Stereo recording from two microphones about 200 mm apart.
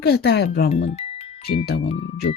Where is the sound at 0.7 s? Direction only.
30° left (ahead or behind).